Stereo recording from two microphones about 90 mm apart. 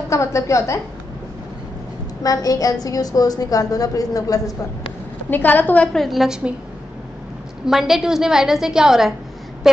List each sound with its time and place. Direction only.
0.1 s a woman's voice: 35° left (ahead or behind)
2.2 s a woman's voice: 40° left (ahead or behind)
5.3 s a woman's voice: 20° left (ahead or behind)
5.9 s a woman's voice: centre (ahead or behind)
7.6 s a woman's voice: 5° right (ahead or behind)